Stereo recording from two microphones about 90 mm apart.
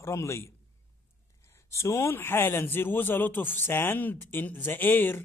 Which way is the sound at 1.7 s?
30° left (ahead or behind).